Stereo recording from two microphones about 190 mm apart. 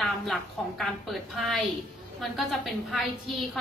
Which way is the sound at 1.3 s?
Centre (ahead or behind).